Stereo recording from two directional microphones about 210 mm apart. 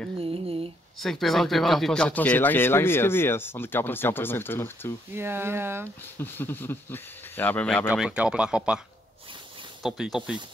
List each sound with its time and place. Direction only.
0.2 s a sound: 25° right (ahead or behind)
0.9 s speech: centre (ahead or behind)
5.1 s speech: 10° right (ahead or behind)
6.1 s speech: 10° left (ahead or behind)
7.9 s speech: 5° right (ahead or behind)
9.8 s speech: centre (ahead or behind)